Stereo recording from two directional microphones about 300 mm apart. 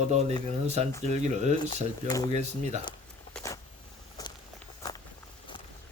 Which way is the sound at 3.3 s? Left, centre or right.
Centre.